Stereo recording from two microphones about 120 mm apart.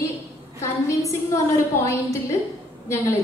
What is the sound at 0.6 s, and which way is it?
Speech, 25° left (ahead or behind).